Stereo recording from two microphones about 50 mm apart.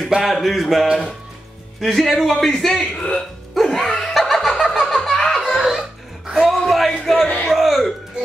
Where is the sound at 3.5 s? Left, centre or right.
Centre.